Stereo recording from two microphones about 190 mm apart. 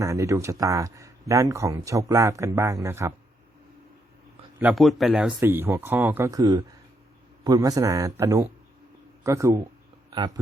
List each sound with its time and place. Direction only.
0.0 s speech: 15° right (ahead or behind)
4.6 s a man's voice: centre (ahead or behind); by 10.4 s 20° right (ahead or behind)